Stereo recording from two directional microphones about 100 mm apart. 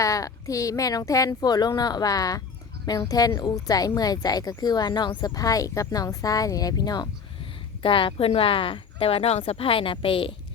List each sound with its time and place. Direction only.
0.0 s speech: 35° left (ahead or behind)
7.8 s a woman's voice: 60° left (ahead or behind)